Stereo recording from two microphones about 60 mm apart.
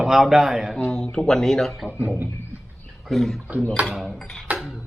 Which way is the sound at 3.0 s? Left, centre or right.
Centre.